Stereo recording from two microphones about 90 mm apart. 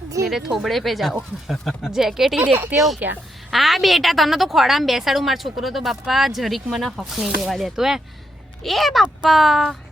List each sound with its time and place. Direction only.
0.3 s a woman's voice: 5° right (ahead or behind)
2.4 s speech: 20° right (ahead or behind)
2.7 s a woman's voice: centre (ahead or behind)